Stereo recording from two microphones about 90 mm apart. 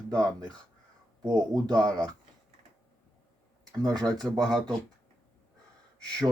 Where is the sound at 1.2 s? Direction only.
40° right (ahead or behind).